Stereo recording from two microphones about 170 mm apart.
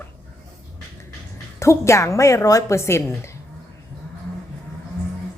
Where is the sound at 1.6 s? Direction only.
15° left (ahead or behind).